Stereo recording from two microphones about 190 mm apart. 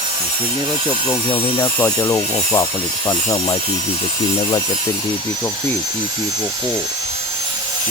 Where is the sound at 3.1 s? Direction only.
20° left (ahead or behind).